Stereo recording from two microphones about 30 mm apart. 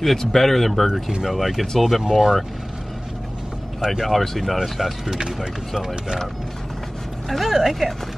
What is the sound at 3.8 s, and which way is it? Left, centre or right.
Speech, centre.